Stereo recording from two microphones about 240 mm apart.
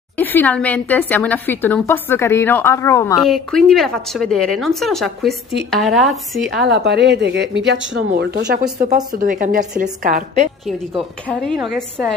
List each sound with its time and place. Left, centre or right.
0.2 s a woman's voice: centre
3.2 s speech: centre
6.7 s a woman's voice: right
11.0 s speech: centre